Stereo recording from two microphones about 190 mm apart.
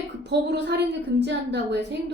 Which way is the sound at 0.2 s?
65° right (ahead or behind).